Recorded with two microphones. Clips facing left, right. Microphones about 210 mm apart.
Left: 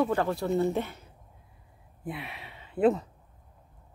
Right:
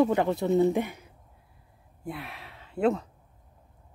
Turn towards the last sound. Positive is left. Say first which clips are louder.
# left 2 dB
turn(degrees=0)  # may be behind; listen again after turning